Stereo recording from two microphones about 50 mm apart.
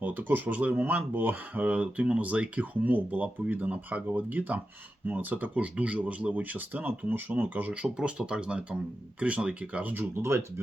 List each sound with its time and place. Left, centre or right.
0.1 s speech: right
1.7 s speech: right
10.2 s speech: right